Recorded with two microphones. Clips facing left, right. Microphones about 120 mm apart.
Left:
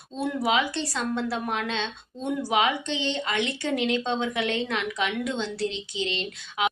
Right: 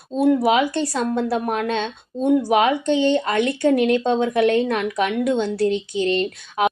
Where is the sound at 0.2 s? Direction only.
45° right (ahead or behind).